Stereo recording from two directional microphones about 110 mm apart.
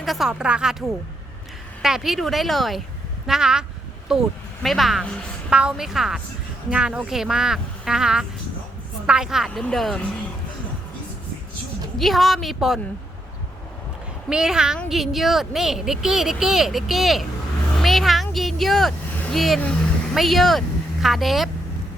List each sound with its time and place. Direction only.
0.0 s speech: centre (ahead or behind)
1.8 s speech: 5° right (ahead or behind)
11.9 s speech: centre (ahead or behind)
14.3 s a woman's voice: 5° right (ahead or behind)